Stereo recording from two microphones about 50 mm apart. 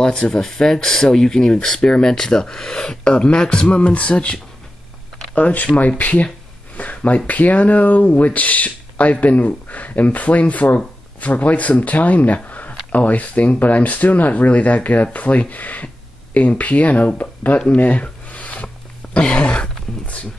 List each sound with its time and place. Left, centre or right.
0.0 s speech: left
5.5 s speech: left
12.4 s a sound: left
12.9 s speech: left
18.0 s a sound: left
19.1 s speech: left